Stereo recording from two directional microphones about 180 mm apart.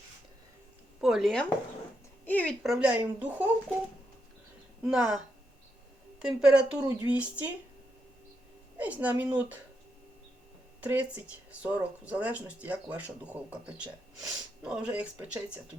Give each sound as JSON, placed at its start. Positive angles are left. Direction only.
{"t": 1.0, "sound": "speech", "side_deg": 0}
{"t": 4.8, "sound": "speech", "side_deg": -5}
{"t": 6.4, "sound": "speech", "side_deg": -5}
{"t": 6.7, "sound": "speech", "side_deg": -20}
{"t": 7.1, "sound": "speech", "side_deg": -10}
{"t": 8.8, "sound": "speech", "side_deg": -10}
{"t": 10.8, "sound": "speech", "side_deg": -10}